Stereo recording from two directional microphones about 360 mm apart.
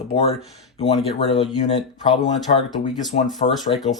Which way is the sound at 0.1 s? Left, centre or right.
Centre.